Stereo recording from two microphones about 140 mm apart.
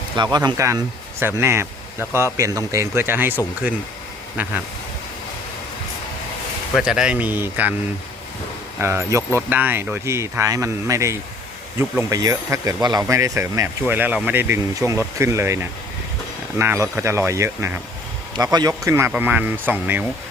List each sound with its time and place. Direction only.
0.2 s speech: 30° right (ahead or behind); by 3.8 s 15° right (ahead or behind)
6.7 s speech: 5° right (ahead or behind)
8.8 s speech: 15° right (ahead or behind)
13.8 s speech: 10° right (ahead or behind); by 18.7 s 30° right (ahead or behind)
18.7 s speech: 15° right (ahead or behind)